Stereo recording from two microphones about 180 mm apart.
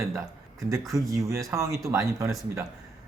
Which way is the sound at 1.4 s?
15° right (ahead or behind).